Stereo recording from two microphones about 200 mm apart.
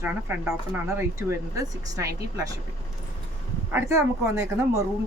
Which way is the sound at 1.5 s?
15° right (ahead or behind).